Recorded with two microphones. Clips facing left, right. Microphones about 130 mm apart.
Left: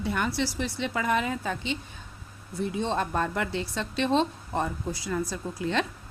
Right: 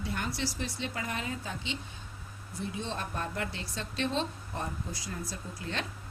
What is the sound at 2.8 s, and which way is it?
A woman's voice, 75° left (ahead or behind).